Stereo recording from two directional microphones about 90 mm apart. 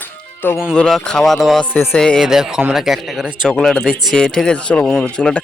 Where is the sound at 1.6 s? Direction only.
20° left (ahead or behind).